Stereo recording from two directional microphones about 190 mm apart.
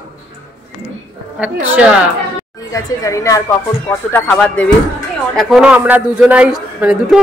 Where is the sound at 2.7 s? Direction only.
15° left (ahead or behind).